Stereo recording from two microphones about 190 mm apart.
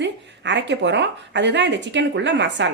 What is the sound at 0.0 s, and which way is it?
A woman's voice, 70° right (ahead or behind).